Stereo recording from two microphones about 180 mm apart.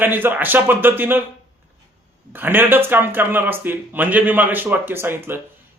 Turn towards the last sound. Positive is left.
turn(degrees=-10)  # may be behind; listen again after turning